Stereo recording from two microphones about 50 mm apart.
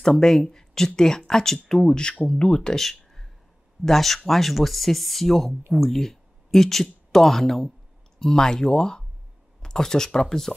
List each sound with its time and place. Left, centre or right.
0.0 s speech: centre
2.8 s a sound: centre
3.8 s speech: centre